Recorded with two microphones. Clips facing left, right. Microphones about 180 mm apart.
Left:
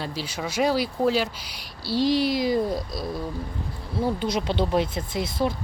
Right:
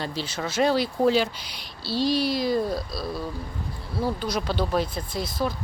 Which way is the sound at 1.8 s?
15° left (ahead or behind).